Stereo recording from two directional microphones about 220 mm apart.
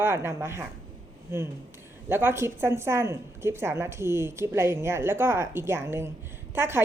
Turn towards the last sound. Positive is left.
turn(degrees=-10)  # may be behind; listen again after turning